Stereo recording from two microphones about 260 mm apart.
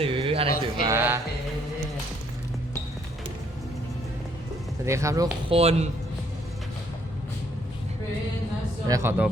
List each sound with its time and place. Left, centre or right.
0.0 s a sound: right
0.8 s speech: centre
4.9 s speech: centre
8.9 s speech: centre